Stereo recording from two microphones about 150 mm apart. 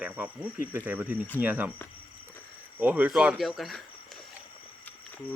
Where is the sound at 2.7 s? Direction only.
10° right (ahead or behind).